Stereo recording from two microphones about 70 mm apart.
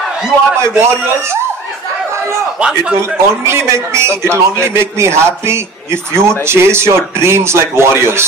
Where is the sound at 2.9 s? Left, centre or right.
Right.